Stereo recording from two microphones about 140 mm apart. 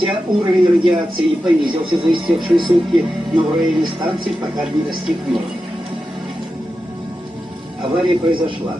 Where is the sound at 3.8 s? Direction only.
35° right (ahead or behind).